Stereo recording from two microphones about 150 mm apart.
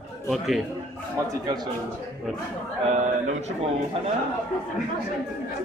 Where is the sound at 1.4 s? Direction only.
25° right (ahead or behind).